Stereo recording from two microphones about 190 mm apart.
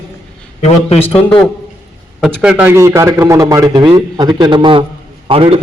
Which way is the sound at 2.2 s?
5° right (ahead or behind).